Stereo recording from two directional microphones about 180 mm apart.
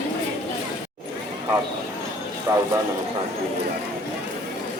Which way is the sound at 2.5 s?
20° right (ahead or behind).